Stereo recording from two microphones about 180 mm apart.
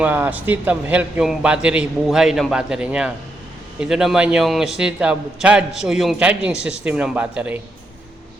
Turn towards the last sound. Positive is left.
turn(degrees=-5)  # may be behind; listen again after turning